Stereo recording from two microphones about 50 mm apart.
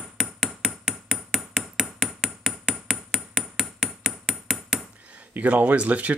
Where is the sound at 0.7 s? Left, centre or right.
Centre.